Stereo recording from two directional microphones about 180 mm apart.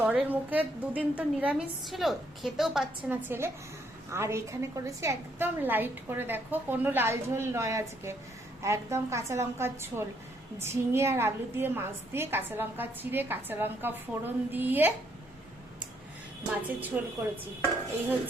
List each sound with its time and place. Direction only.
0.0 s a woman's voice: 10° right (ahead or behind)
16.6 s a woman's voice: 10° right (ahead or behind)